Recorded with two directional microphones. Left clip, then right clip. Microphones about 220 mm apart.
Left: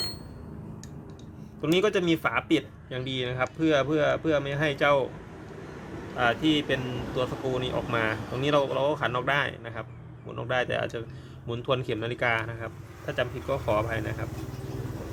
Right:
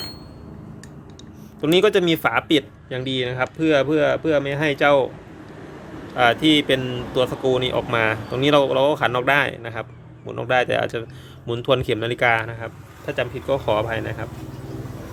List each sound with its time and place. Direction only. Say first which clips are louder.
1.6 s speech: right 8 dB; 35° right (ahead or behind)
6.1 s speech: right 8 dB; 35° right (ahead or behind)